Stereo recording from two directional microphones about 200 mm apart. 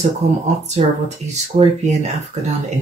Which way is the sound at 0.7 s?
35° right (ahead or behind).